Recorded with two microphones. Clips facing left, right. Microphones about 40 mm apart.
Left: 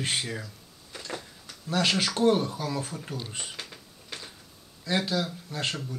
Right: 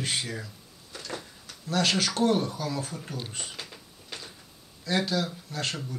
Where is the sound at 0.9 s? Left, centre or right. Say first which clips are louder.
Even; centre.